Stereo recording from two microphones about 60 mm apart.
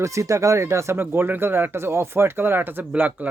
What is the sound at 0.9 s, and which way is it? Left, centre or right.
Speech, right.